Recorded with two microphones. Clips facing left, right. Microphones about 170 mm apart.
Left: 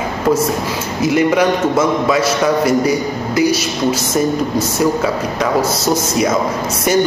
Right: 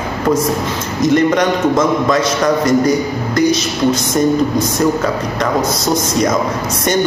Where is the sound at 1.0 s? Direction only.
5° left (ahead or behind).